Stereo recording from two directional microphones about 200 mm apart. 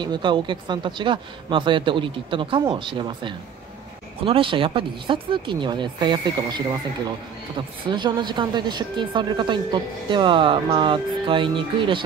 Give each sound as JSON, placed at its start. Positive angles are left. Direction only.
{"t": 0.0, "sound": "a woman's voice", "side_deg": -20}